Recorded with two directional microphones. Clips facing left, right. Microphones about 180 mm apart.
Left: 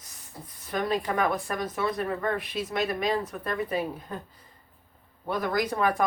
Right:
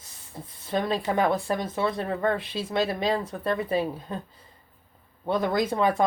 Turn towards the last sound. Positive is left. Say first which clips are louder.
# right 2 dB
turn(degrees=-25)  # may be behind; listen again after turning